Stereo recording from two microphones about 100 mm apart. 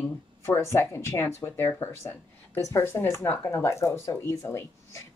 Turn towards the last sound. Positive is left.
turn(degrees=30)  # may be behind; listen again after turning